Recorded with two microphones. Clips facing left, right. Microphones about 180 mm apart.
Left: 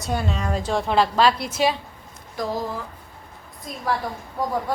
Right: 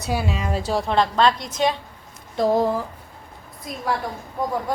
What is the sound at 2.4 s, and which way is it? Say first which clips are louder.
Speech: right 7 dB; 25° right (ahead or behind).